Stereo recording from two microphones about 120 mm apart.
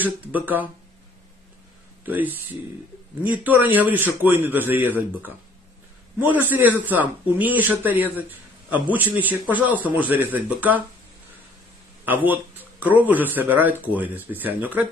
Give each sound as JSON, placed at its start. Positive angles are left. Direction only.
{"t": 0.0, "sound": "speech", "side_deg": -15}
{"t": 2.0, "sound": "speech", "side_deg": -15}
{"t": 12.0, "sound": "speech", "side_deg": -15}